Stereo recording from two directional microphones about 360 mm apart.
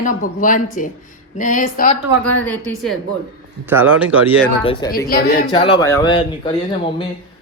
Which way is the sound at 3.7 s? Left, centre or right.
Centre.